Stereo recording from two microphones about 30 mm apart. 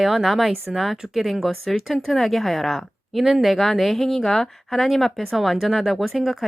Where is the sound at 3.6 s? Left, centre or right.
Centre.